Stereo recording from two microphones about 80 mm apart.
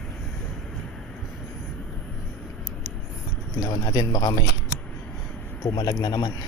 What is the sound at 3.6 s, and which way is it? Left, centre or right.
Speech, left.